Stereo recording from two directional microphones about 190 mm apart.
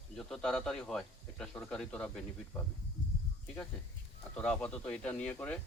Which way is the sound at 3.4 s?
5° left (ahead or behind).